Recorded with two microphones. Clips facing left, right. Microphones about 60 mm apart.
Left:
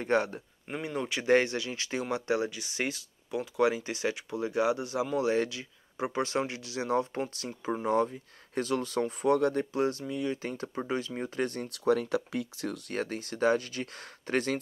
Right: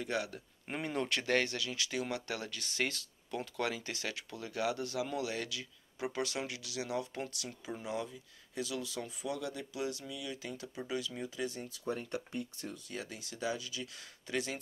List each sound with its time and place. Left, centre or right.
0.0 s speech: left
0.7 s speech: centre
1.2 s speech: left